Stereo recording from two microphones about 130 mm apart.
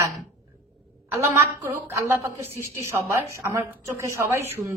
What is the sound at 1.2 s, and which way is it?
A woman's voice, 20° right (ahead or behind).